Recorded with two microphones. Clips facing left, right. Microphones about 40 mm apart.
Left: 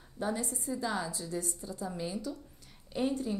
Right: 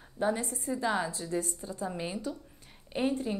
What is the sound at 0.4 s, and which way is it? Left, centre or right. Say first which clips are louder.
A woman's voice: right 2 dB; right.